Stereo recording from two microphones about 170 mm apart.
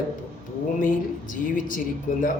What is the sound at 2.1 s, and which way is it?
Speech, 50° left (ahead or behind).